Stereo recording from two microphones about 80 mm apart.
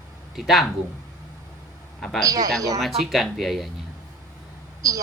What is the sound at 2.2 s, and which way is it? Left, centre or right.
Speech, right.